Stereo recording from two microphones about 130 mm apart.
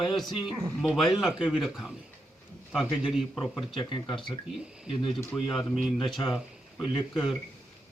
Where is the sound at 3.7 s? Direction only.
40° left (ahead or behind).